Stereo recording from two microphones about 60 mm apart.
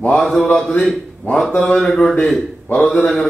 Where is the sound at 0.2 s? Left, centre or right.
Centre.